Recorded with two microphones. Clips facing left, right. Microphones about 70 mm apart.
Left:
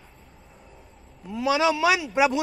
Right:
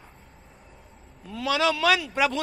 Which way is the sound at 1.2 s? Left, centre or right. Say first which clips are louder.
Left 2 dB; centre.